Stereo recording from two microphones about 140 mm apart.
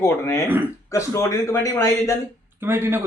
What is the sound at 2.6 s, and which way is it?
Speech, 15° right (ahead or behind).